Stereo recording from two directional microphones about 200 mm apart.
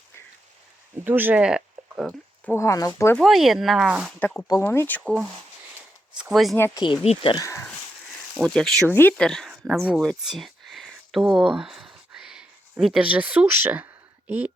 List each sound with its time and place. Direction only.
1.0 s speech: 10° right (ahead or behind)
2.5 s speech: 15° left (ahead or behind)
3.2 s speech: centre (ahead or behind)
4.4 s speech: 15° left (ahead or behind)
6.1 s speech: centre (ahead or behind)
6.6 s speech: 20° left (ahead or behind)
7.4 s a sound: 15° left (ahead or behind)
8.4 s speech: centre (ahead or behind)